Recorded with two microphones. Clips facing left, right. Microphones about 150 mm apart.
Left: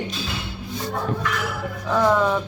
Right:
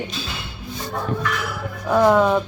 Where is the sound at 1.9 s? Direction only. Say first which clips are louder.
Right 4 dB; 15° right (ahead or behind).